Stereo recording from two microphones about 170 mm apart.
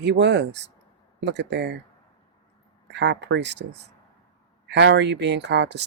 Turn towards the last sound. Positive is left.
turn(degrees=-90)